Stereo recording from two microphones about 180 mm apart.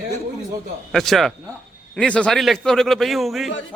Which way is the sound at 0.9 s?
Centre (ahead or behind).